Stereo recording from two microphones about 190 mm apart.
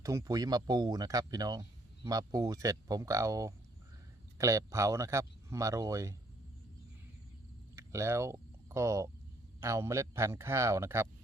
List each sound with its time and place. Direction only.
0.0 s speech: 15° right (ahead or behind)
7.8 s a sound: 15° right (ahead or behind)
9.6 s speech: 15° right (ahead or behind)